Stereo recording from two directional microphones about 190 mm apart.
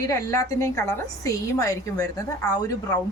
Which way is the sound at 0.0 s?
15° left (ahead or behind).